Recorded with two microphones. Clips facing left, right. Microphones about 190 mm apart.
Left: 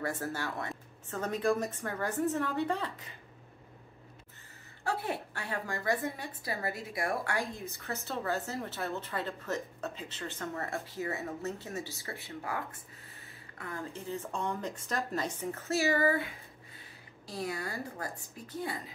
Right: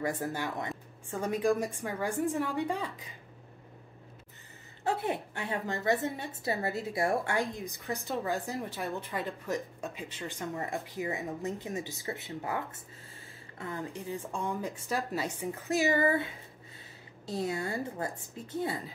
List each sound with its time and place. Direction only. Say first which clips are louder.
0.0 s a woman's voice: right 2 dB; 15° right (ahead or behind)
4.8 s a woman's voice: right 3 dB; 20° right (ahead or behind)
17.3 s a woman's voice: right 4 dB; 25° right (ahead or behind)